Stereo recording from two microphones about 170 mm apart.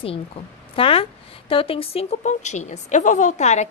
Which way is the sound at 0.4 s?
35° left (ahead or behind).